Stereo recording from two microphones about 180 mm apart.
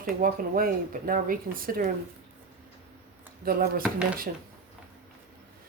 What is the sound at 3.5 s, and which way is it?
Speech, 55° right (ahead or behind).